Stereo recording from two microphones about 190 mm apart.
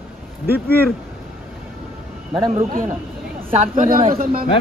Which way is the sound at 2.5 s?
40° right (ahead or behind).